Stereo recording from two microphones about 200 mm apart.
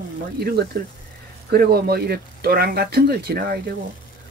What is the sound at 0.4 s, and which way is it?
Speech, 50° right (ahead or behind).